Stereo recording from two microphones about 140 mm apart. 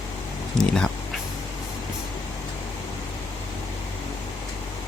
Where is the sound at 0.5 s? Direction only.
5° left (ahead or behind).